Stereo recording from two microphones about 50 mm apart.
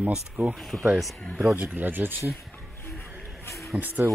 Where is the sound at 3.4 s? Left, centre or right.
Left.